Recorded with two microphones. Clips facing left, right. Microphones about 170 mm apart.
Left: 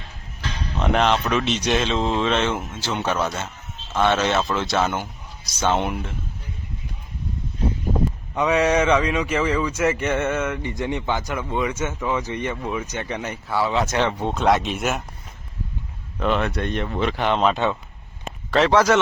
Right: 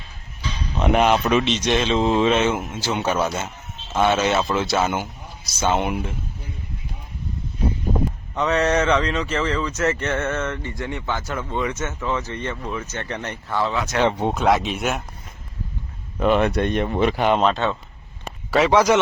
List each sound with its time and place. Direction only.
0.8 s speech: 10° right (ahead or behind)
1.5 s speech: 5° left (ahead or behind); by 6.1 s 10° right (ahead or behind)
8.4 s speech: 10° left (ahead or behind)
14.3 s speech: centre (ahead or behind)
16.1 s speech: 15° right (ahead or behind)
17.5 s speech: 15° left (ahead or behind)
18.5 s speech: 10° right (ahead or behind)